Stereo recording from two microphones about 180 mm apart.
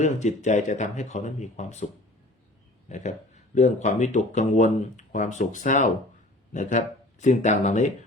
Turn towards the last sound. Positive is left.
turn(degrees=45)  # may be behind; listen again after turning